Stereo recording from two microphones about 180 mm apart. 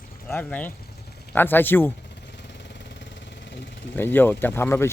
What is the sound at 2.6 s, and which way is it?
Vehicle, 75° left (ahead or behind).